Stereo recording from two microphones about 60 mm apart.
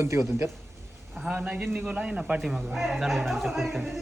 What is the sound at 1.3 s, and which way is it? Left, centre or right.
A man's voice, centre.